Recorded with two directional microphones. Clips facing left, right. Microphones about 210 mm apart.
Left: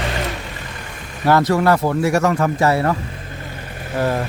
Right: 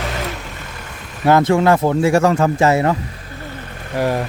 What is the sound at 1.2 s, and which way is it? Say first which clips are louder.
Speech: right 2 dB; 25° right (ahead or behind).